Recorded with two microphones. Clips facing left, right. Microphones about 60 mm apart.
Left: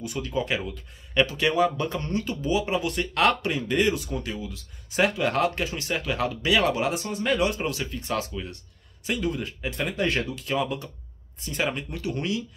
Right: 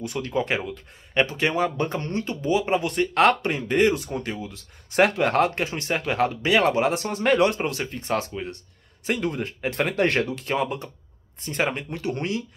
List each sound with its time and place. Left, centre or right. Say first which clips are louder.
0.0 s speech: right 2 dB; right
9.8 s speech: right 4 dB; right